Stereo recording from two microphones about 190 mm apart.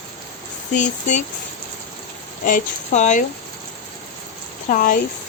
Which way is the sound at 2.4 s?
40° left (ahead or behind).